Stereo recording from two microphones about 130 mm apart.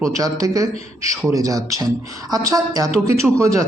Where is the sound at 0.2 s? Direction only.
30° right (ahead or behind).